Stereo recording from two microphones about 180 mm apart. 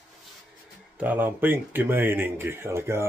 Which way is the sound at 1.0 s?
10° right (ahead or behind).